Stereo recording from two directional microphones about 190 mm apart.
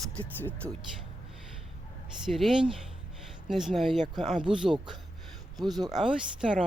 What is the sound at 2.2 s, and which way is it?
Speech, centre (ahead or behind).